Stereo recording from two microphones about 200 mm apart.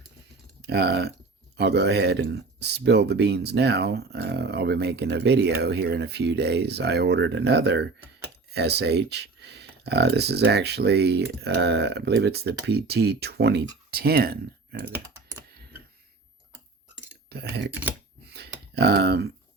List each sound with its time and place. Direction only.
0.6 s speech: 55° right (ahead or behind)
17.2 s speech: 55° right (ahead or behind)
18.3 s a sound: 55° right (ahead or behind)